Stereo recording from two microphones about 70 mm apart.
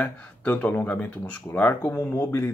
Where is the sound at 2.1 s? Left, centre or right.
Left.